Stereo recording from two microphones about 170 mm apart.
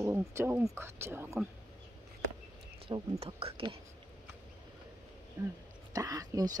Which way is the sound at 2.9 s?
35° right (ahead or behind).